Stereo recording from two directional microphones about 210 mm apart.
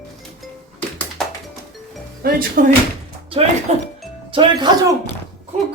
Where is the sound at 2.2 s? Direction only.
45° right (ahead or behind).